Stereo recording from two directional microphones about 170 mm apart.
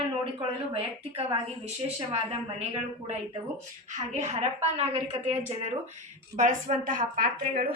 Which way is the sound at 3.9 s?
45° right (ahead or behind).